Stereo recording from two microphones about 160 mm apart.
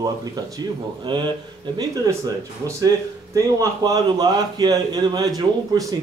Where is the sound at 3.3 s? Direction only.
20° right (ahead or behind).